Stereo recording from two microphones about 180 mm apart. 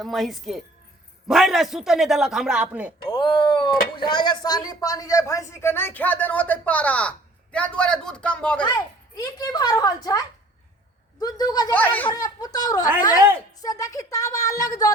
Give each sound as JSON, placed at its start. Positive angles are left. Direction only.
{"t": 0.0, "sound": "a man's voice", "side_deg": 0}
{"t": 3.1, "sound": "speech", "side_deg": 30}
{"t": 8.6, "sound": "a woman's voice", "side_deg": 20}
{"t": 11.7, "sound": "speech", "side_deg": 10}
{"t": 12.0, "sound": "a woman's voice", "side_deg": 20}